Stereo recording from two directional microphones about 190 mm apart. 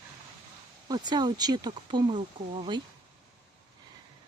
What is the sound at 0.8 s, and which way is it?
Speech, 20° right (ahead or behind).